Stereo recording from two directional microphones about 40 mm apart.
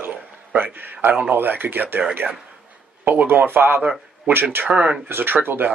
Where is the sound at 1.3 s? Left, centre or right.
Right.